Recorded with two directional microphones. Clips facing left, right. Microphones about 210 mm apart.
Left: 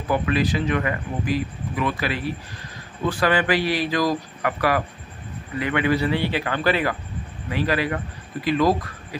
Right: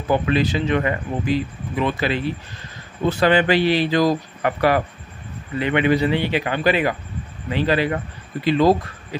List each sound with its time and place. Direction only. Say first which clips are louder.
0.1 s speech: right 3 dB; 25° right (ahead or behind)